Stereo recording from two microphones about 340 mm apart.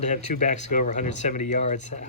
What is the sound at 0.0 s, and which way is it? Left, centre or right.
Speech, left.